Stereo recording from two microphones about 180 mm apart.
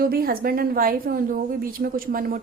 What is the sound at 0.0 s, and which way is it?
A woman's voice, 55° right (ahead or behind).